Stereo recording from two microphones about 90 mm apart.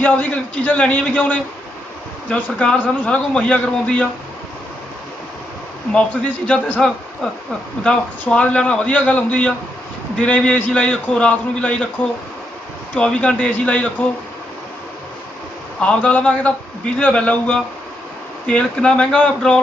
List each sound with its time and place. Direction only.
0.0 s a man's voice: 15° left (ahead or behind)
6.5 s a man's voice: 10° left (ahead or behind)
13.0 s a man's voice: 10° left (ahead or behind)
15.8 s a man's voice: 15° left (ahead or behind)